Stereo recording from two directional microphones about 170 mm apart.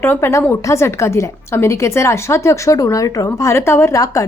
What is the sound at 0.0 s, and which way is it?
A woman's voice, 15° left (ahead or behind).